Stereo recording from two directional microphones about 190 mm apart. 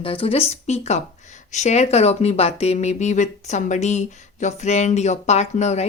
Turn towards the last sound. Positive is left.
turn(degrees=35)  # may be behind; listen again after turning